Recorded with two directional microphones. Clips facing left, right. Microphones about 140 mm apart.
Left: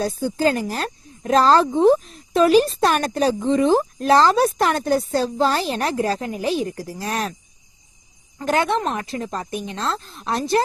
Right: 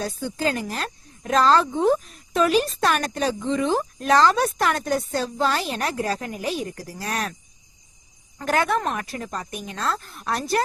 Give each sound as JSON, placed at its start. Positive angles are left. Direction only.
{"t": 0.0, "sound": "speech", "side_deg": 35}
{"t": 8.4, "sound": "a woman's voice", "side_deg": 25}